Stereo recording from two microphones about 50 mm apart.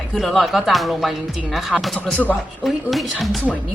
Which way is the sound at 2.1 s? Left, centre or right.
Left.